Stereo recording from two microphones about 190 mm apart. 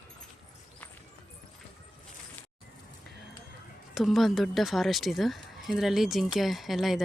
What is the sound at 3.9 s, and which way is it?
Speech, centre (ahead or behind).